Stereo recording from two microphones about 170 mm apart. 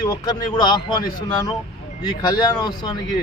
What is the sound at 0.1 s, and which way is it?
Speech, 25° left (ahead or behind).